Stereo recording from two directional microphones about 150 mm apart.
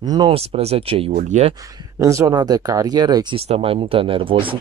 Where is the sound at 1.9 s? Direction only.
20° right (ahead or behind).